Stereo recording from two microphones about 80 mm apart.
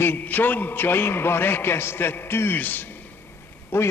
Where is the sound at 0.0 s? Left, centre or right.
Left.